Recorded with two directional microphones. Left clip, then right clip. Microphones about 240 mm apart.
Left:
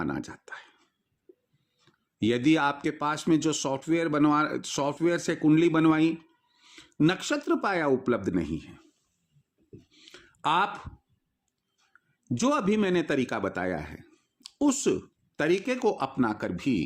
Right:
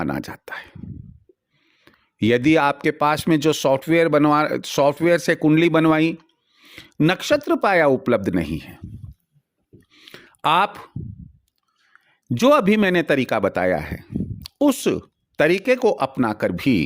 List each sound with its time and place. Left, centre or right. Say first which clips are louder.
0.0 s speech: right 7 dB; right
1.8 s speech: right 6 dB; right
9.9 s a sound: right 13 dB; right
11.9 s speech: right 8 dB; right